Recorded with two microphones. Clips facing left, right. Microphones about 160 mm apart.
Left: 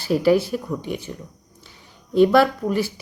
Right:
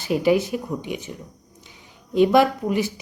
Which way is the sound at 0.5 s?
10° right (ahead or behind).